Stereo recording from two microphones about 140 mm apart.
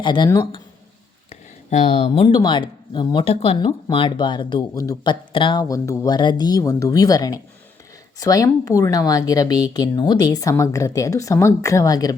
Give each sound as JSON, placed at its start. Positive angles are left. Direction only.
{"t": 0.0, "sound": "speech", "side_deg": 30}
{"t": 1.3, "sound": "a sound", "side_deg": 55}
{"t": 2.2, "sound": "speech", "side_deg": 35}